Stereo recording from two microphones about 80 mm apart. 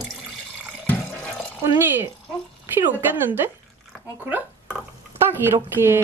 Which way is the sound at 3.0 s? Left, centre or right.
Right.